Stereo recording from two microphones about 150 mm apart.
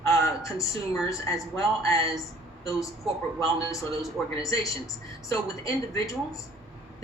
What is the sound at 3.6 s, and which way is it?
A woman's voice, 20° left (ahead or behind).